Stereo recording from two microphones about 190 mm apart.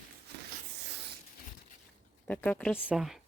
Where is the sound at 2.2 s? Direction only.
5° left (ahead or behind).